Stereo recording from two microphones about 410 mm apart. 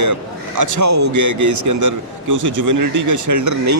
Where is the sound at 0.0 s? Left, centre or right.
Right.